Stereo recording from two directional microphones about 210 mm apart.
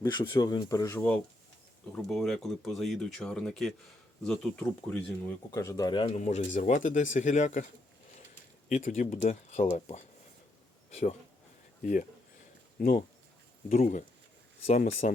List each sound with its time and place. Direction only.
0.0 s speech: 20° left (ahead or behind); by 7.6 s 35° left (ahead or behind)
8.7 s speech: 35° left (ahead or behind)
11.8 s speech: 40° left (ahead or behind)
15.0 s speech: 35° left (ahead or behind)